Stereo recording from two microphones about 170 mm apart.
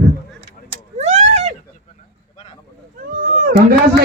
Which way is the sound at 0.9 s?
40° right (ahead or behind).